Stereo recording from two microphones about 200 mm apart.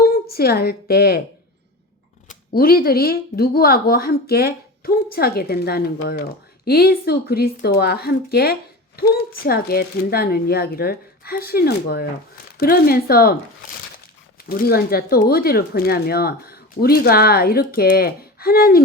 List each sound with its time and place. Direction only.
0.0 s a woman's voice: 50° left (ahead or behind)
2.2 s speech: 50° left (ahead or behind)
14.4 s speech: 45° left (ahead or behind)